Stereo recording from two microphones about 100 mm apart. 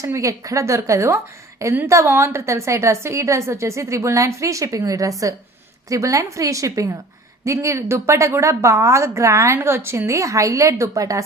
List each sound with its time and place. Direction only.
0.0 s a woman's voice: 30° right (ahead or behind)